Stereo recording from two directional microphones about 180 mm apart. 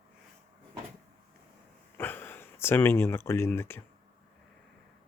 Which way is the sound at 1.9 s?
10° left (ahead or behind).